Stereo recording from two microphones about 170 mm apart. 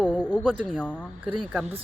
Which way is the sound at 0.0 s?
5° left (ahead or behind).